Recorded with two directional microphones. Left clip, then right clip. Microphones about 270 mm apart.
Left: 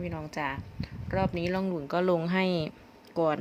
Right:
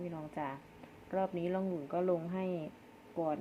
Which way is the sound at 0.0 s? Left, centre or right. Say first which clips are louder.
Left 7 dB; left.